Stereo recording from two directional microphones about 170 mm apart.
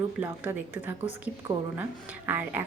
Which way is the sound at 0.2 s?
10° right (ahead or behind).